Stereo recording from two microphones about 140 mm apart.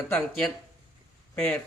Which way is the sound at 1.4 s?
5° left (ahead or behind).